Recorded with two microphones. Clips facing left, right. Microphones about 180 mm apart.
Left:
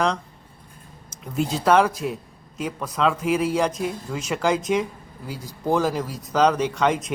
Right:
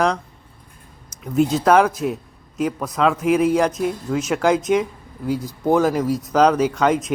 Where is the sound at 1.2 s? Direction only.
5° right (ahead or behind).